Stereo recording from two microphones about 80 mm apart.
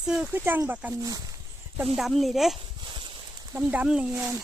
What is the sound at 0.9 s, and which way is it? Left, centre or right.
Speech, right.